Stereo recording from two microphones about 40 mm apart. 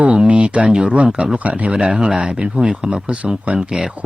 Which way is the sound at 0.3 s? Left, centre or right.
Right.